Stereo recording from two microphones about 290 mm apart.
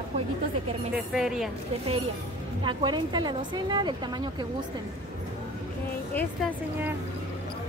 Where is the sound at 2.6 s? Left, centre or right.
Centre.